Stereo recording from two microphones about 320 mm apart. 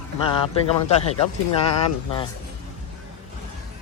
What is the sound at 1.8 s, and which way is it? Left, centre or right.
Speech, centre.